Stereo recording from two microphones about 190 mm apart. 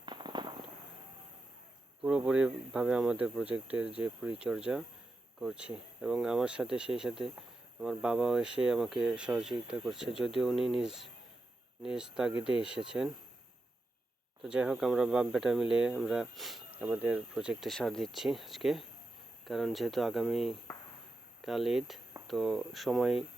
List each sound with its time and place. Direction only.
0.0 s firecracker: 25° right (ahead or behind)
2.0 s speech: 5° right (ahead or behind)
14.4 s speech: 5° right (ahead or behind)